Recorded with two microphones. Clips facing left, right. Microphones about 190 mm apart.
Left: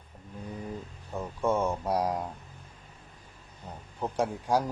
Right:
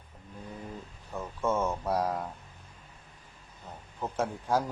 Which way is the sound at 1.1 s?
15° left (ahead or behind).